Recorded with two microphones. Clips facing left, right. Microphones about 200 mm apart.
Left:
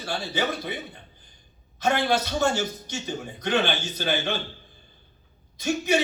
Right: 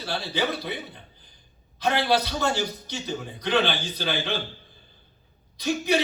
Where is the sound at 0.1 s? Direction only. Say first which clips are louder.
Even; 50° left (ahead or behind).